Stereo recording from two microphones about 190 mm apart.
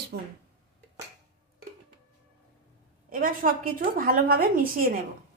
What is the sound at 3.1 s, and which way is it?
A woman's voice, 45° right (ahead or behind).